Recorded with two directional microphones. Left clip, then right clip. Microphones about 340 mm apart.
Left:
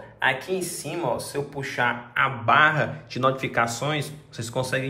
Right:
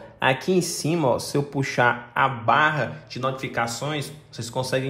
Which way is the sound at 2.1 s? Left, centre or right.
Centre.